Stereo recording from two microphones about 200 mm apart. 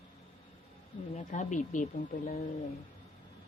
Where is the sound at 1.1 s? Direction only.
40° left (ahead or behind).